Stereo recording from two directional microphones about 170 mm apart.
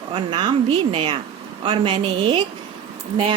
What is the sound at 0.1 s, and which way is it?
Speech, 25° right (ahead or behind).